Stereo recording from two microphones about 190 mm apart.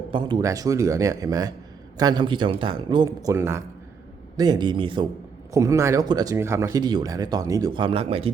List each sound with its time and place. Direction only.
0.1 s speech: 25° right (ahead or behind)